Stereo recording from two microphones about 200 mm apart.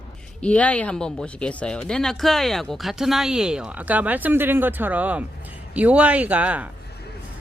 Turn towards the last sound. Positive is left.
turn(degrees=-5)  # may be behind; listen again after turning